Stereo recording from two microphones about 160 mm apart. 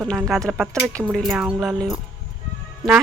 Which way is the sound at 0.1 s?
5° left (ahead or behind).